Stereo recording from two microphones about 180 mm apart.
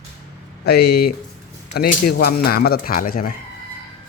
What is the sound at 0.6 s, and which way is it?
Speech, 65° left (ahead or behind).